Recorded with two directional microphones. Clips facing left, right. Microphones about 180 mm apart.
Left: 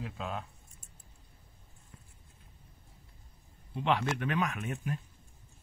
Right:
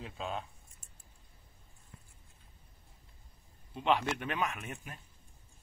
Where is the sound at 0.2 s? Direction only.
25° right (ahead or behind).